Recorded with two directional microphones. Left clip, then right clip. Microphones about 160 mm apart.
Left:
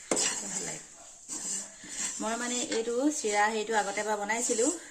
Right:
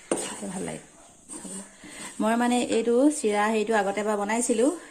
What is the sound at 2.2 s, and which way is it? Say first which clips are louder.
A woman's voice: right 10 dB; 55° right (ahead or behind).